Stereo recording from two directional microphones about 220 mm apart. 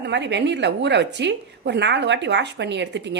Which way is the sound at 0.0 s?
50° right (ahead or behind).